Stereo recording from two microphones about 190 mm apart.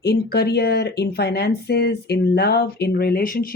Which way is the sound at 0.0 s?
60° left (ahead or behind).